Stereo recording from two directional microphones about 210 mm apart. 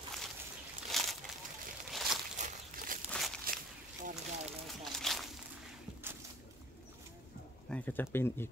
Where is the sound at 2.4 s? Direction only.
35° right (ahead or behind).